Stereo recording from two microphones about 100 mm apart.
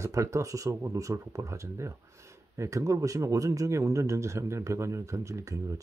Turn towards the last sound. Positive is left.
turn(degrees=-30)  # may be behind; listen again after turning